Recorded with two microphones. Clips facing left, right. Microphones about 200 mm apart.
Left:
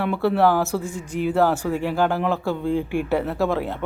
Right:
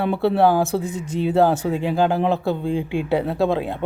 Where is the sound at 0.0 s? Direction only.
25° right (ahead or behind).